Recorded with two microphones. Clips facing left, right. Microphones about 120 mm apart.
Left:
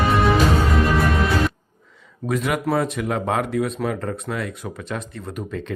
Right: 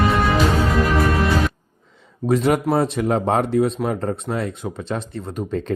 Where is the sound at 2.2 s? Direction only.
30° right (ahead or behind).